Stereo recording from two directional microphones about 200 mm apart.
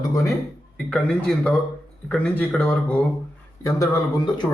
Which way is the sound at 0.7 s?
5° left (ahead or behind).